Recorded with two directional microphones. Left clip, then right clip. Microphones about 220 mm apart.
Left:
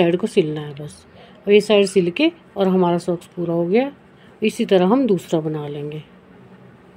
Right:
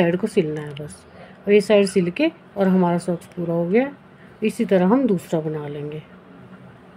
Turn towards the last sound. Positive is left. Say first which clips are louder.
# left 2 dB
turn(degrees=20)  # may be behind; listen again after turning